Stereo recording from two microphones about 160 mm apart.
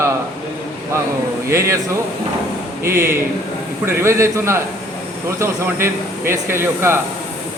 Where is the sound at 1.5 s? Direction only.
15° right (ahead or behind).